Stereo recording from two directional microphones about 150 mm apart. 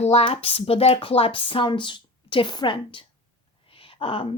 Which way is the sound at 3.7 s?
35° left (ahead or behind).